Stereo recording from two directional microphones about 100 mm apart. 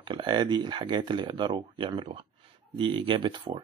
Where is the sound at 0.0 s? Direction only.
50° right (ahead or behind).